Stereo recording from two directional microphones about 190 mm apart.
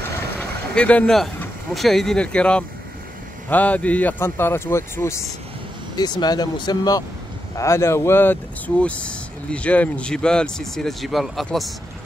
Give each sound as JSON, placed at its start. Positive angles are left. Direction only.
{"t": 0.4, "sound": "speech", "side_deg": 5}